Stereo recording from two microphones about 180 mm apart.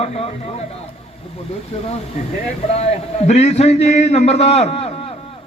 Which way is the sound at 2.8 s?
35° left (ahead or behind).